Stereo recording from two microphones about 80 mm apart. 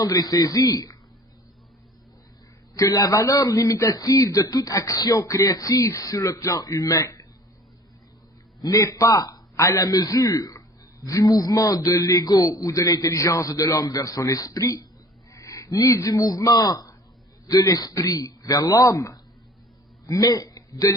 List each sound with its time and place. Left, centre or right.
0.0 s a man's voice: left
2.7 s a man's voice: left
8.6 s a man's voice: left